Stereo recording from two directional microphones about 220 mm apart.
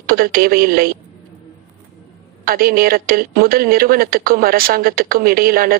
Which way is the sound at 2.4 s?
40° right (ahead or behind).